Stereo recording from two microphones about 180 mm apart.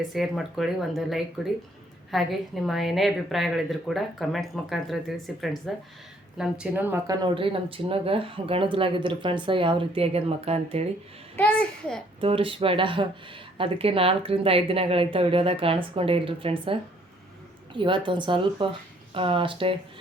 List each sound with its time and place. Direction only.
0.1 s a woman's voice: centre (ahead or behind); by 10.8 s 35° right (ahead or behind)
11.3 s a woman's voice: 5° left (ahead or behind)
12.2 s speech: 30° right (ahead or behind)
17.7 s speech: 25° right (ahead or behind)